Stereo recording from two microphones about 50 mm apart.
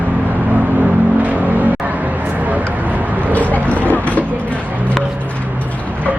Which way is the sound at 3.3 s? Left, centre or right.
Left.